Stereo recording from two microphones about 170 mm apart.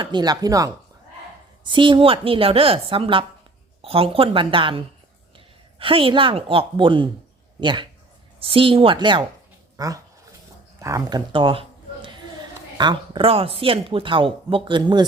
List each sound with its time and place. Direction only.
0.0 s speech: 25° right (ahead or behind)
5.8 s speech: 30° right (ahead or behind)
12.7 s speech: 25° right (ahead or behind)